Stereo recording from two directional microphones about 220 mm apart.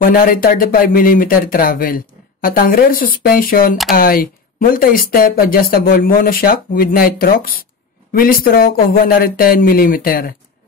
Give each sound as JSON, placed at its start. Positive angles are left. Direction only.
{"t": 0.0, "sound": "speech", "side_deg": 40}